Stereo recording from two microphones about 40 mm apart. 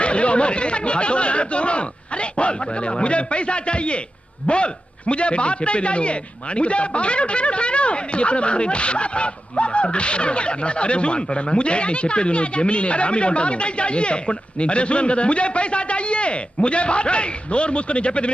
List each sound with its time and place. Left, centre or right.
0.0 s a man's voice: left